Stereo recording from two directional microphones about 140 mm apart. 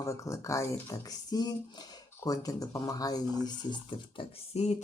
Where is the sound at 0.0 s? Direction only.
20° left (ahead or behind).